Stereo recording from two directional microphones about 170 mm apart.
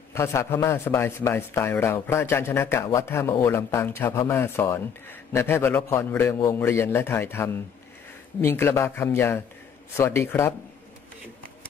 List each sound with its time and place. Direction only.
0.1 s a man's voice: 15° left (ahead or behind)